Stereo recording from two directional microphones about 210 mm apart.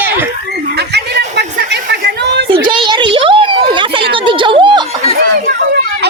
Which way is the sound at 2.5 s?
25° right (ahead or behind).